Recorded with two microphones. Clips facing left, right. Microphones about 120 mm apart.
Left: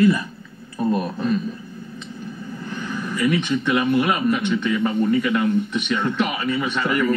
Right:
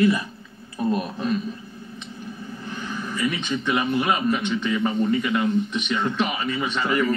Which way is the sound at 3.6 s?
20° right (ahead or behind).